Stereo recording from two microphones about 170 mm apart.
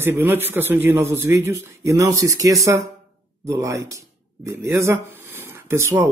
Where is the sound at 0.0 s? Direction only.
15° right (ahead or behind).